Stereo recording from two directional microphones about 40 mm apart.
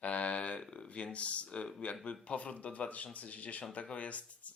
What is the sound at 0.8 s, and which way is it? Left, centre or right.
Speech, left.